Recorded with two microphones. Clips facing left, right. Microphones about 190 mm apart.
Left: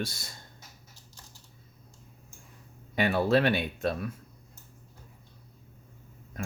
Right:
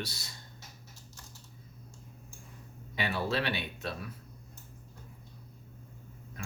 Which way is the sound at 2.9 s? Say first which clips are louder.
Left 8 dB; 50° left (ahead or behind).